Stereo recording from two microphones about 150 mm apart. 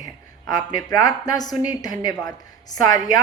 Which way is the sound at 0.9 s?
25° left (ahead or behind).